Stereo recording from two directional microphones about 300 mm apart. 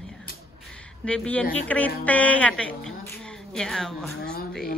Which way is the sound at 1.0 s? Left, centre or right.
Centre.